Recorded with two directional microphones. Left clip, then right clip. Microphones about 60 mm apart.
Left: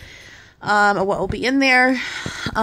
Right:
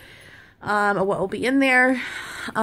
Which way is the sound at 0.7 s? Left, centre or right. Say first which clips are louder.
Left 4 dB; left.